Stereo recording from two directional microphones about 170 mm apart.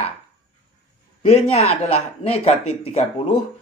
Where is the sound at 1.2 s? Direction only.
35° left (ahead or behind).